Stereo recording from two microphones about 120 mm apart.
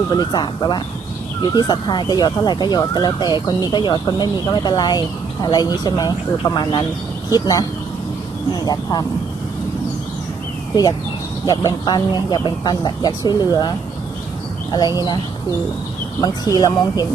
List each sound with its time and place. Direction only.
0.1 s speech: 35° left (ahead or behind)
11.4 s speech: 30° left (ahead or behind)
16.2 s speech: 35° left (ahead or behind)